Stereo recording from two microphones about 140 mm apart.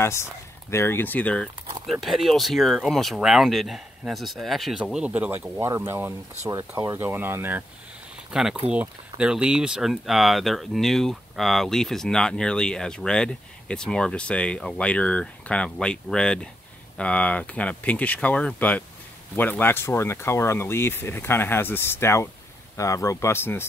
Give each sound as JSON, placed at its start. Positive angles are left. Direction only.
{"t": 0.0, "sound": "speech", "side_deg": 20}
{"t": 8.3, "sound": "speech", "side_deg": -5}